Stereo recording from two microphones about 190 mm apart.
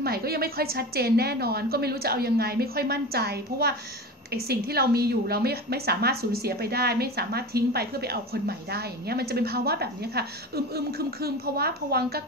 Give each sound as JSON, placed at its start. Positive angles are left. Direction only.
{"t": 0.0, "sound": "a woman's voice", "side_deg": -55}